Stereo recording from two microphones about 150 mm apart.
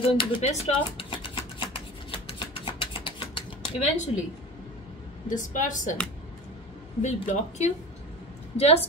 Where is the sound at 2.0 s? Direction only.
35° left (ahead or behind).